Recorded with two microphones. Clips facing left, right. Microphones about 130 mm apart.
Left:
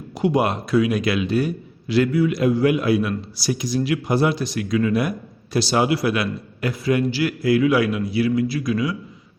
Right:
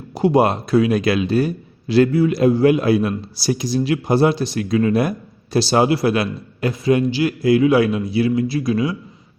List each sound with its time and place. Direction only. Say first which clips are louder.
0.1 s a man's voice: right 4 dB; 35° right (ahead or behind)